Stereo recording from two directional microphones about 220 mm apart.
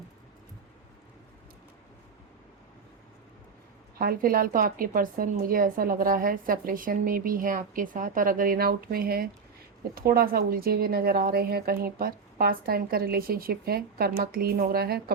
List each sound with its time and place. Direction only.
3.9 s a woman's voice: 40° right (ahead or behind)